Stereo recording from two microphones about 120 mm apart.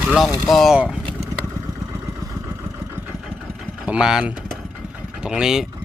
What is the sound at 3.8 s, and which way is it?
Speech, 5° right (ahead or behind).